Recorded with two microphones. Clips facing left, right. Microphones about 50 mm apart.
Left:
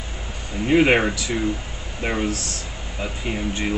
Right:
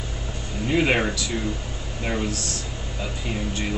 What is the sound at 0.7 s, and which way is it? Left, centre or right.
Speech, left.